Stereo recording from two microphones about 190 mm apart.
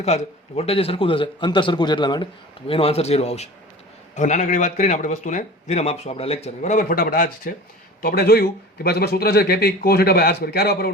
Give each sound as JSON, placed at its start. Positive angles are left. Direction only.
{"t": 0.0, "sound": "a man's voice", "side_deg": 35}